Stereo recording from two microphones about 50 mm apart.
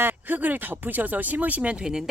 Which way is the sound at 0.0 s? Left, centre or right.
Right.